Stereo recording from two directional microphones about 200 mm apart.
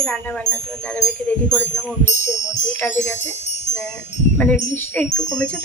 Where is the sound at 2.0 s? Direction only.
35° left (ahead or behind).